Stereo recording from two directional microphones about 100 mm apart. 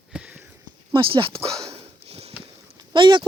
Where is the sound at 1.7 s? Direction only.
90° right.